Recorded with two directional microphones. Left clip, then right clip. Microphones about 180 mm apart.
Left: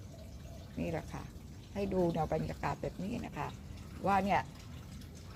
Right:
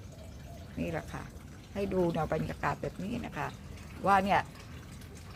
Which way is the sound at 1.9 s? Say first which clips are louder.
Right 2 dB; 25° right (ahead or behind).